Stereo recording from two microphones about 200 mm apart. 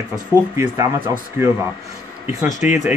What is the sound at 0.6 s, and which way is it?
Speech, 20° right (ahead or behind).